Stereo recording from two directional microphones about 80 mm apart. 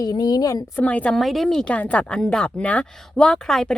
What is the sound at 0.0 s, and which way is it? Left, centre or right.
Speech, left.